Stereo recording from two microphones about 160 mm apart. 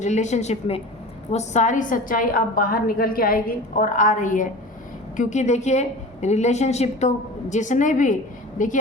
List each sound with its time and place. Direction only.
0.0 s a woman's voice: 45° left (ahead or behind)